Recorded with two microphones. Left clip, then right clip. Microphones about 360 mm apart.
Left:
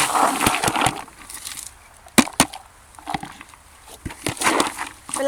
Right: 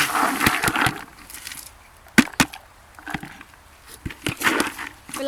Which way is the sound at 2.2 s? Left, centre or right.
Centre.